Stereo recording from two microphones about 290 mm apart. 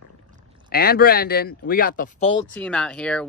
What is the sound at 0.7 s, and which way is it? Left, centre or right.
Speech, left.